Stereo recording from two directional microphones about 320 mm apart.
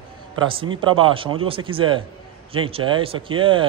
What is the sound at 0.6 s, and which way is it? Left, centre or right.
Speech, centre.